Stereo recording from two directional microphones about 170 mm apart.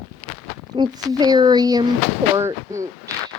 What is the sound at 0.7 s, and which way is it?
Speech, 25° right (ahead or behind).